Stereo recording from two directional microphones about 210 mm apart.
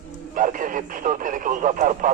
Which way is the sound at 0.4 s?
40° right (ahead or behind).